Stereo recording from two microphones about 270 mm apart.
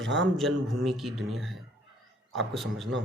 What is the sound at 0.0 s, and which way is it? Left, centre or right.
Speech, right.